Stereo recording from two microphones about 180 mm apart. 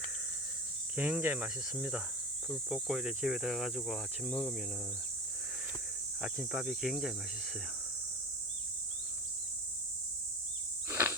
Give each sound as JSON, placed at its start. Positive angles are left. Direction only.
{"t": 0.9, "sound": "cricket", "side_deg": -10}
{"t": 2.5, "sound": "speech", "side_deg": 0}
{"t": 6.2, "sound": "speech", "side_deg": -5}
{"t": 10.8, "sound": "insect", "side_deg": -10}